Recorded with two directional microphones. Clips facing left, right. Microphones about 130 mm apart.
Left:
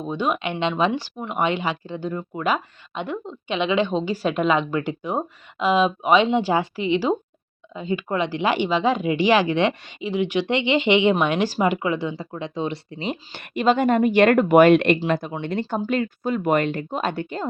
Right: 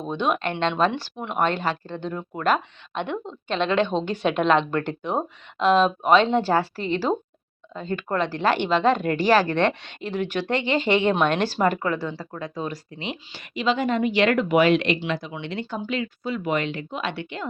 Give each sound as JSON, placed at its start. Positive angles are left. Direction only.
{"t": 0.0, "sound": "speech", "side_deg": 5}
{"t": 1.5, "sound": "speech", "side_deg": 15}
{"t": 13.3, "sound": "speech", "side_deg": 55}